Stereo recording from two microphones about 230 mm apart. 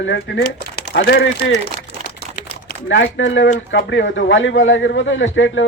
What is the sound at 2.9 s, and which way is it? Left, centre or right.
Speech, left.